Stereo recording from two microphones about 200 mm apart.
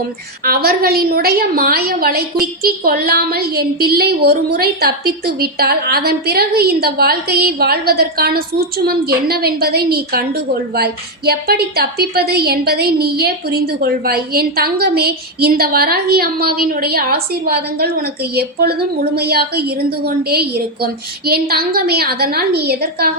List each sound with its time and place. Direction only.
0.4 s a woman's voice: 50° right (ahead or behind)